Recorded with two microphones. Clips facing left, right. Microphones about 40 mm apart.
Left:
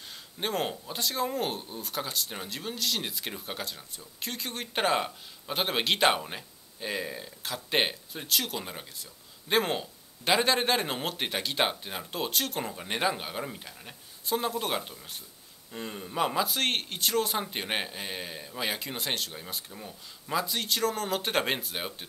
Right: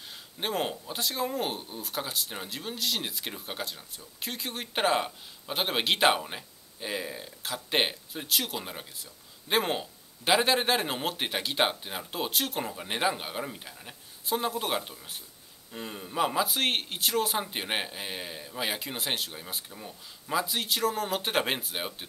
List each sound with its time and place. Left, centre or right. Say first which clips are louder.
0.0 s speech: even; centre